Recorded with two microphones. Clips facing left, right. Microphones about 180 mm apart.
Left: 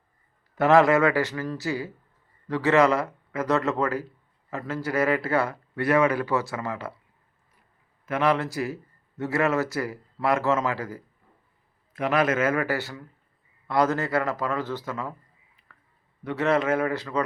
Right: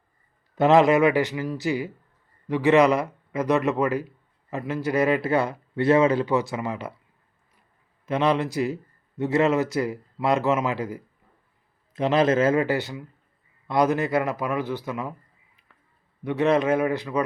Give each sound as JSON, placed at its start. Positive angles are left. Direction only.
{"t": 0.5, "sound": "speech", "side_deg": -20}
{"t": 8.0, "sound": "speech", "side_deg": -20}
{"t": 15.7, "sound": "a sound", "side_deg": -20}
{"t": 16.2, "sound": "speech", "side_deg": -15}